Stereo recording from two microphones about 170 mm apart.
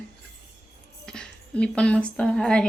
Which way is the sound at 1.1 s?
5° left (ahead or behind).